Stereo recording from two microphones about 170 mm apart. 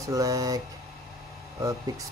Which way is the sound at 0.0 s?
20° right (ahead or behind).